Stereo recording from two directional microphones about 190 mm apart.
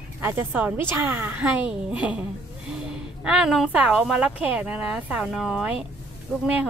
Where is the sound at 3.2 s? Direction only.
5° right (ahead or behind).